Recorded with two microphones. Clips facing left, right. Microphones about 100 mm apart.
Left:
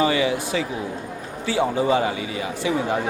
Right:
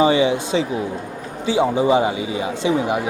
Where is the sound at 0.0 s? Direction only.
20° right (ahead or behind).